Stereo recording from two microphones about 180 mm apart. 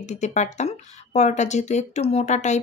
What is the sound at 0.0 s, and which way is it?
Speech, 40° left (ahead or behind).